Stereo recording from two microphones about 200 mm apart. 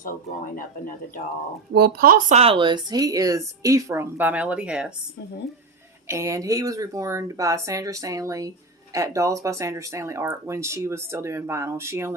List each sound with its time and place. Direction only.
1.7 s speech: 50° right (ahead or behind)
2.4 s speech: 25° right (ahead or behind); by 4.9 s 5° right (ahead or behind)
6.1 s speech: 15° right (ahead or behind)